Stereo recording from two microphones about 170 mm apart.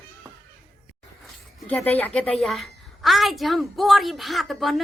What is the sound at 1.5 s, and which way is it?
A woman's voice, 10° left (ahead or behind).